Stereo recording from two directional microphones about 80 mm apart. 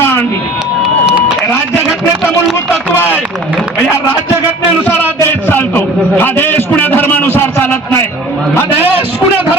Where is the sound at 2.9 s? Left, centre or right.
Left.